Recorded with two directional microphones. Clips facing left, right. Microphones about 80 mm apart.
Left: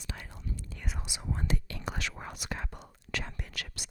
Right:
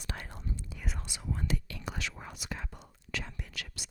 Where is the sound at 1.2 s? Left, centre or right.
Left.